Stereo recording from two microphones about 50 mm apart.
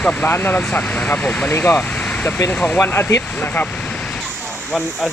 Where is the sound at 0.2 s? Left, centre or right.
Left.